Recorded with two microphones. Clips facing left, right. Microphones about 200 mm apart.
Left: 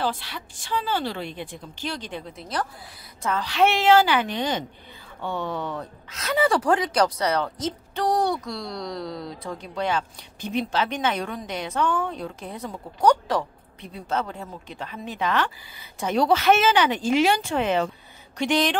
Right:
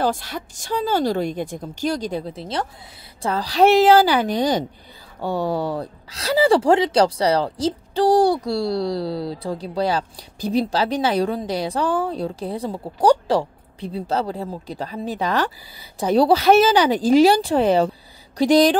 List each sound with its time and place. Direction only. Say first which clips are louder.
0.0 s a woman's voice: right 6 dB; 45° right (ahead or behind)